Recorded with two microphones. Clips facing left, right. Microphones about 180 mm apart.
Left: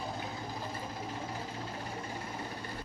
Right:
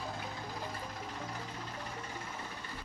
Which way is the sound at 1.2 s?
30° left (ahead or behind).